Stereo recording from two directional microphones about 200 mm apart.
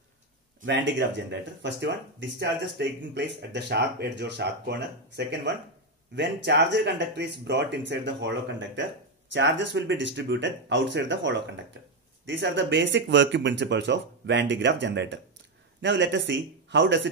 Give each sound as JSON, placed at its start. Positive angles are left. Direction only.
{"t": 0.7, "sound": "speech", "side_deg": -65}